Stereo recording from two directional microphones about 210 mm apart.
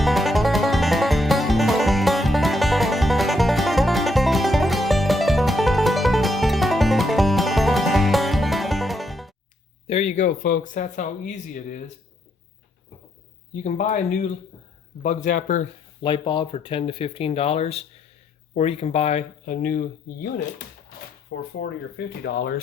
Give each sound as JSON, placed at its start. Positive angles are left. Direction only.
{"t": 0.0, "sound": "music", "side_deg": 0}
{"t": 9.8, "sound": "speech", "side_deg": 30}
{"t": 13.5, "sound": "speech", "side_deg": 35}
{"t": 16.0, "sound": "speech", "side_deg": 20}
{"t": 21.6, "sound": "speech", "side_deg": 50}